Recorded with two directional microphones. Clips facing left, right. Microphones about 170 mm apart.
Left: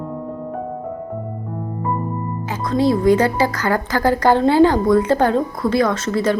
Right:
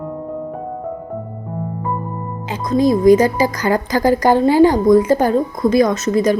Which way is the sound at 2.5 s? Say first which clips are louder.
Right 3 dB; 15° right (ahead or behind).